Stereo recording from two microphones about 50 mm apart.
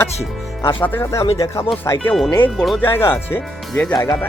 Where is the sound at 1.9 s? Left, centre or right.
Left.